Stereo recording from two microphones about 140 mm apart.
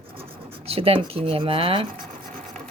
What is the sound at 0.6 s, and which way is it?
Speech, 45° right (ahead or behind).